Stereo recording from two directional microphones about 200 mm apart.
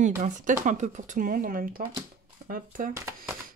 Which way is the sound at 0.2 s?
40° right (ahead or behind).